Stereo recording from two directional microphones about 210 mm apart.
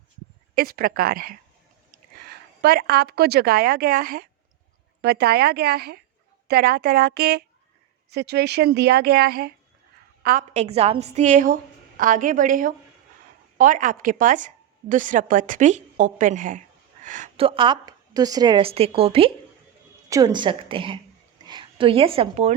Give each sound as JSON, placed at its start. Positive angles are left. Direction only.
{"t": 0.5, "sound": "a woman's voice", "side_deg": -45}
{"t": 10.2, "sound": "a woman's voice", "side_deg": -35}
{"t": 20.1, "sound": "a woman's voice", "side_deg": -15}